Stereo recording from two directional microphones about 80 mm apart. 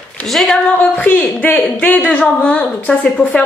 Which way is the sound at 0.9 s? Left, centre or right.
Centre.